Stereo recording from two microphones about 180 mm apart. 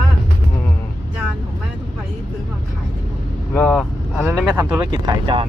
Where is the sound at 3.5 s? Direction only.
10° left (ahead or behind).